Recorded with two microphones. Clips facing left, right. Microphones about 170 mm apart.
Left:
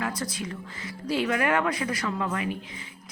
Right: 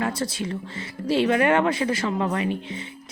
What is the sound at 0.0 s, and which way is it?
A woman's voice, 25° right (ahead or behind).